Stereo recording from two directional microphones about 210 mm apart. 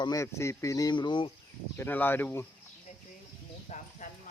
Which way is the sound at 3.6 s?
35° left (ahead or behind).